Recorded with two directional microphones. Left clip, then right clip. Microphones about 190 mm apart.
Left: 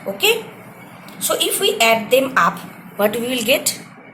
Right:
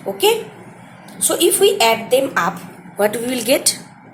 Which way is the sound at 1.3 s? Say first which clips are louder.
Right 4 dB; 35° right (ahead or behind).